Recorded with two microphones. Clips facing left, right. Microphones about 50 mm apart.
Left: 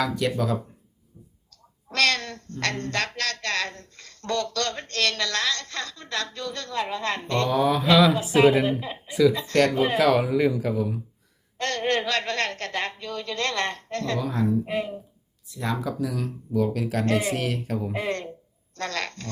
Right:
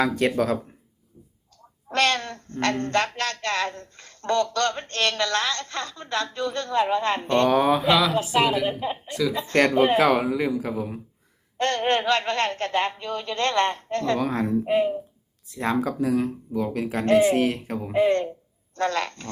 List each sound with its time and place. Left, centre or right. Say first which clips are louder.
0.0 s speech: right 3 dB; right
0.3 s a woman's voice: right 3 dB; right
1.9 s speech: right 1 dB; right
7.7 s speech: right 1 dB; right
8.2 s a woman's voice: left 3 dB; left
9.0 s speech: left 8 dB; centre
9.3 s speech: right 1 dB; right
10.2 s speech: left 2 dB; centre
10.8 s speech: left 3 dB; right
14.2 s a woman's voice: right 1 dB; right
14.6 s speech: right 7 dB; right
15.5 s speech: right 4 dB; right